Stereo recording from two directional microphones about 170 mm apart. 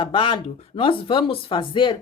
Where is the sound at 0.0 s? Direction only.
30° left (ahead or behind).